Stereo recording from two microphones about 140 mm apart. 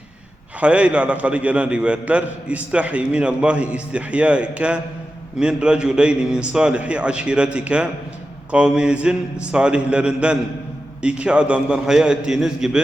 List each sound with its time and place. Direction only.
0.6 s a man's voice: 10° right (ahead or behind)